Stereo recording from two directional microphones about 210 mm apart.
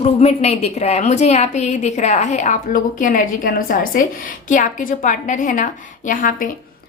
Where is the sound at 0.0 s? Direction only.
30° left (ahead or behind).